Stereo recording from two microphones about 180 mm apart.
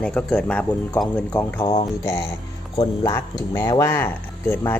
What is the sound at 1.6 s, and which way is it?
Speech, 35° left (ahead or behind).